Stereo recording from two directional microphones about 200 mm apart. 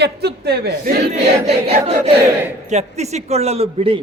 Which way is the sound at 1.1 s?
30° right (ahead or behind).